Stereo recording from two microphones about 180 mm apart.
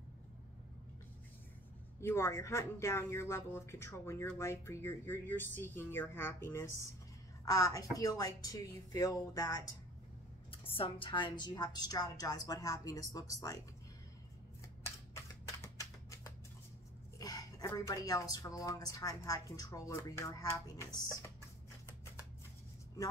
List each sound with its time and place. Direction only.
2.0 s speech: 15° left (ahead or behind)
10.5 s speech: 30° left (ahead or behind)
15.6 s a sound: 15° left (ahead or behind)
17.2 s speech: 20° left (ahead or behind)